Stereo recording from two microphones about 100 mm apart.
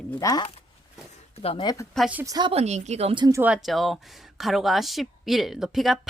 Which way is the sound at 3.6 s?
Centre (ahead or behind).